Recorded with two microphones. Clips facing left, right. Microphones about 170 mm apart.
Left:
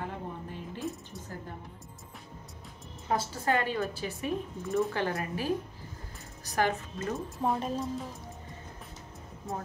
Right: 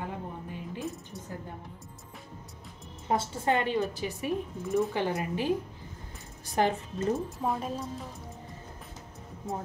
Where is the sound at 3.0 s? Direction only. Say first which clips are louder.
Right 2 dB; 25° right (ahead or behind).